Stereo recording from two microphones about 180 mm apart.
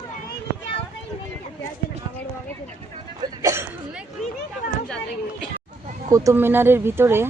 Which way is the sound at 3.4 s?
15° right (ahead or behind).